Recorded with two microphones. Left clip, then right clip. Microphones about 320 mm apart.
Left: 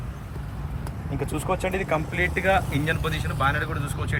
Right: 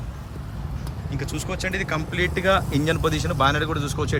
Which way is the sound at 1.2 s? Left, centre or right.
Centre.